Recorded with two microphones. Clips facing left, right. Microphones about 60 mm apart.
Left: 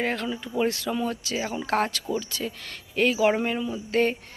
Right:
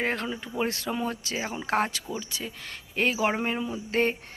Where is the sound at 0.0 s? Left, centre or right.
Right.